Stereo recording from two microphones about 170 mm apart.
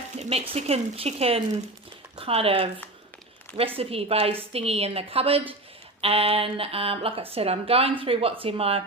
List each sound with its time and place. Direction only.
0.2 s speech: 40° right (ahead or behind)
3.8 s speech: 35° right (ahead or behind)